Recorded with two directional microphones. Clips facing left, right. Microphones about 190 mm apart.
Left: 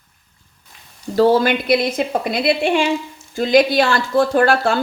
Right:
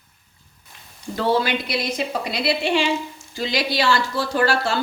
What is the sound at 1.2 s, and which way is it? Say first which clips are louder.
A woman's voice: left 7 dB; 40° left (ahead or behind).